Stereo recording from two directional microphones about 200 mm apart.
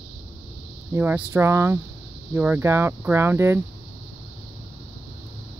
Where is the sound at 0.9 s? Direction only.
10° right (ahead or behind).